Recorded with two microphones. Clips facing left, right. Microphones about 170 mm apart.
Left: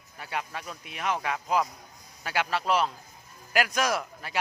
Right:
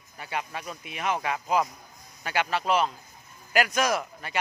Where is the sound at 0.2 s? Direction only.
Centre (ahead or behind).